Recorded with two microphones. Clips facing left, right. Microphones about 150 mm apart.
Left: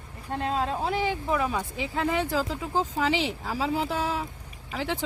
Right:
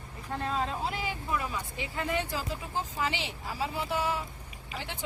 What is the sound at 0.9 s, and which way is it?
Speech, 90° left.